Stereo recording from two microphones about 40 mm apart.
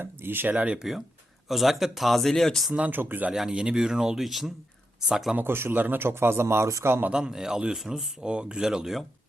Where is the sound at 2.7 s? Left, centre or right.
Right.